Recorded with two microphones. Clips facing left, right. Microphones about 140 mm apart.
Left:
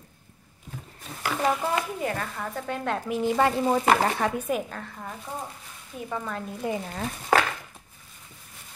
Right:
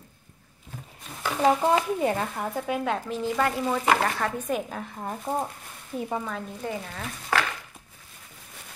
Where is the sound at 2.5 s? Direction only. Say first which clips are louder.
Right 1 dB; 5° right (ahead or behind).